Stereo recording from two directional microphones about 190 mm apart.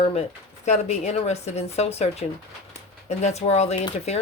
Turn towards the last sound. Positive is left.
turn(degrees=35)  # may be behind; listen again after turning